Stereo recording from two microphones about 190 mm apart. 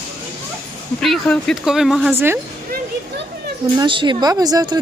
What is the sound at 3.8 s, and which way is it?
Speech, 25° right (ahead or behind).